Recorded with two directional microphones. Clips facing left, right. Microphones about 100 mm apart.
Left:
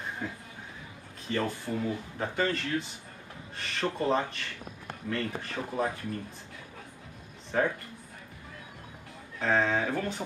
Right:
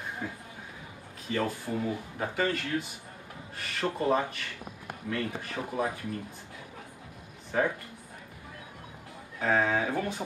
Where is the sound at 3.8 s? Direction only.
15° right (ahead or behind).